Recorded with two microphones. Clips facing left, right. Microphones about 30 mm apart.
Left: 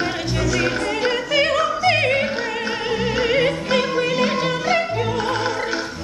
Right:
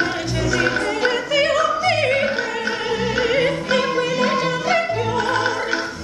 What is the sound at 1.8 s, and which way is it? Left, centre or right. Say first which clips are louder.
Opera: even; centre.